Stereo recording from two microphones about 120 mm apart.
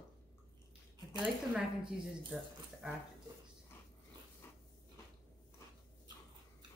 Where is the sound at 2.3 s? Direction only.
10° right (ahead or behind).